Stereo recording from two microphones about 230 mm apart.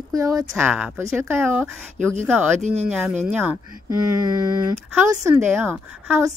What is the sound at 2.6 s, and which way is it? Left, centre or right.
Speech, right.